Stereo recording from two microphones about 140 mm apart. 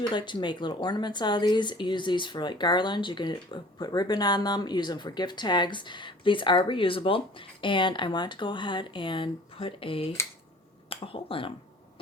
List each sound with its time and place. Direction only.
0.0 s speech: 35° left (ahead or behind)